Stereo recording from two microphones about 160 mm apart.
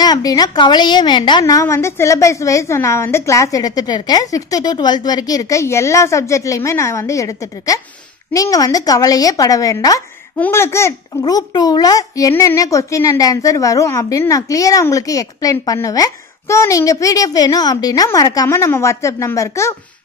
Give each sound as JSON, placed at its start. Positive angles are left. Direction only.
{"t": 0.0, "sound": "a child's voice", "side_deg": 25}